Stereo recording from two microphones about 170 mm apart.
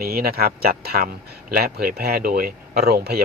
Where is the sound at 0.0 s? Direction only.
65° right (ahead or behind).